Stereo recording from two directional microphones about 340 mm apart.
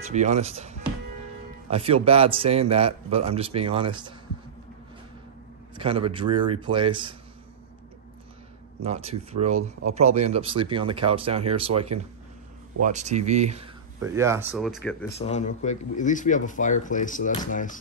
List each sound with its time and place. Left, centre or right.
0.1 s a man's voice: right
5.8 s a man's voice: centre
8.8 s a man's voice: centre
14.0 s speech: centre
15.0 s speech: centre